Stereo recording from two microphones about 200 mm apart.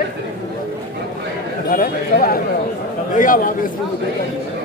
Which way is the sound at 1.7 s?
45° left (ahead or behind).